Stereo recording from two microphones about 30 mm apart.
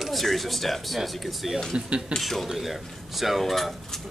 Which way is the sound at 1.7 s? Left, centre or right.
Right.